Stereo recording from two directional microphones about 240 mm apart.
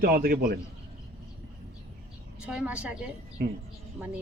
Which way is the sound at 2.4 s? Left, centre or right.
Centre.